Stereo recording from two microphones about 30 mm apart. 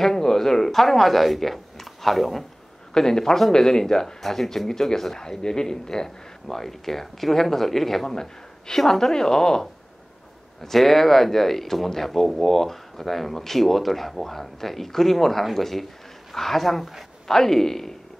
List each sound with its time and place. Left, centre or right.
0.0 s speech: centre
2.9 s speech: centre
8.1 s speech: centre
10.6 s speech: centre